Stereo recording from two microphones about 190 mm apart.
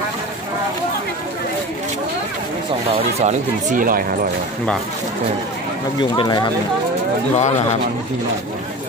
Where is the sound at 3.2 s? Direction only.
45° right (ahead or behind).